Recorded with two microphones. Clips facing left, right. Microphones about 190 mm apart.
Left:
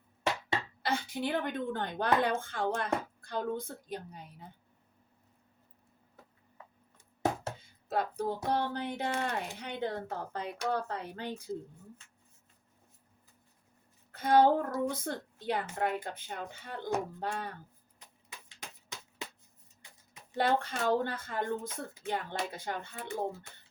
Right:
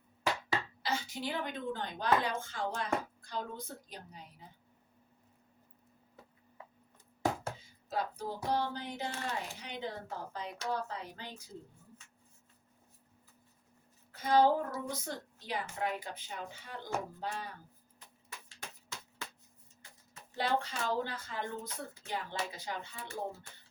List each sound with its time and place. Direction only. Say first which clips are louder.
0.8 s a woman's voice: left 4 dB; 55° left (ahead or behind)
7.9 s music: left 5 dB; 55° left (ahead or behind)
8.4 s a woman's voice: right 1 dB; 55° left (ahead or behind)
14.1 s a woman's voice: left 3 dB; 55° left (ahead or behind)
18.4 s a sound: left 1 dB; 20° left (ahead or behind)
20.3 s a woman's voice: left 4 dB; 55° left (ahead or behind)